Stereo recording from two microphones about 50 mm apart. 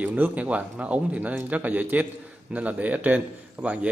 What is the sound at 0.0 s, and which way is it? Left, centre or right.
A man's voice, right.